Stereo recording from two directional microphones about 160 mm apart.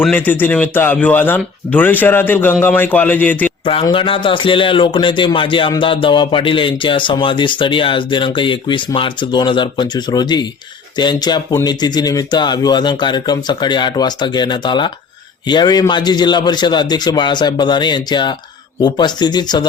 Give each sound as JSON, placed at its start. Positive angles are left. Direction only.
{"t": 0.0, "sound": "a man's voice", "side_deg": 10}
{"t": 3.8, "sound": "speech", "side_deg": 35}